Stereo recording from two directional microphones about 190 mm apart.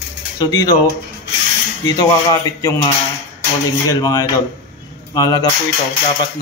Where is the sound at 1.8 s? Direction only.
20° left (ahead or behind).